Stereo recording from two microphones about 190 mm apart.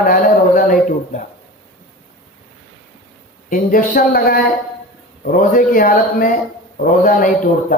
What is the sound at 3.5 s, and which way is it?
A man's voice, 45° left (ahead or behind).